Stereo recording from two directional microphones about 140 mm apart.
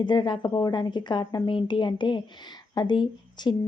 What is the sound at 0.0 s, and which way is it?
A woman's voice, 35° left (ahead or behind).